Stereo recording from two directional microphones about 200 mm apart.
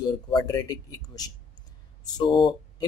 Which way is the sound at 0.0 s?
20° left (ahead or behind).